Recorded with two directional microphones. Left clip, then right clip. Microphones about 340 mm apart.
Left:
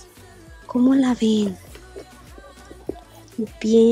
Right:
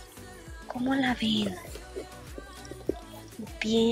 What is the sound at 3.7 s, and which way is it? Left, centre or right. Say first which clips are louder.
Speech: left 11 dB; centre.